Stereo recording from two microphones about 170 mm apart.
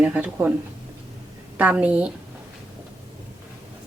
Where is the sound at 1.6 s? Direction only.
10° right (ahead or behind).